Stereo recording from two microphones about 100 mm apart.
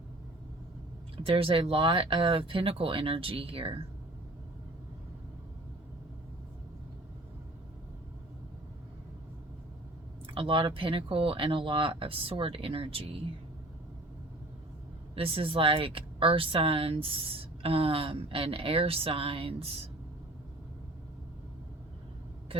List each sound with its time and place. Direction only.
1.1 s speech: 65° right (ahead or behind)
10.2 s speech: 60° right (ahead or behind)
15.1 s speech: 70° right (ahead or behind)